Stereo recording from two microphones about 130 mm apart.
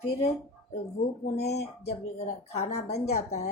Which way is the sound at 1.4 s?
55° left (ahead or behind).